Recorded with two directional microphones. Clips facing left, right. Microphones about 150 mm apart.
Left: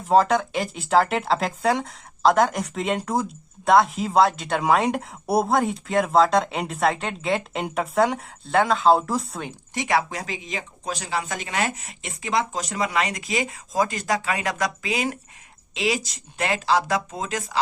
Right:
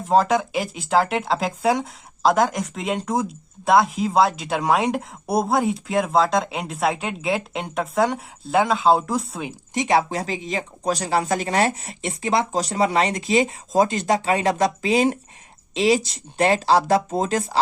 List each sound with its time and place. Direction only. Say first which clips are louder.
0.0 s speech: even; centre (ahead or behind)
9.7 s speech: right 4 dB; 25° right (ahead or behind)